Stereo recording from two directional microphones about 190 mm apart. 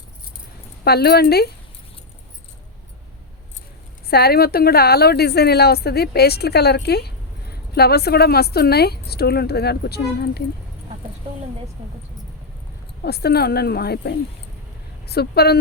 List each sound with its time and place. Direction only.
0.9 s a woman's voice: 55° left (ahead or behind)
4.1 s a woman's voice: 55° left (ahead or behind)
13.0 s a woman's voice: 55° left (ahead or behind)